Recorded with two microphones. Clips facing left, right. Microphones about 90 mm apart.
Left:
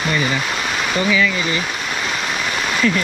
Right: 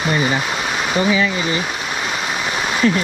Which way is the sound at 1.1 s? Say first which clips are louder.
Left 1 dB; 30° right (ahead or behind).